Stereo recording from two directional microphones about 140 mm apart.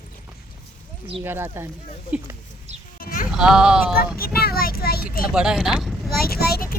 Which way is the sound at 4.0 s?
90° left.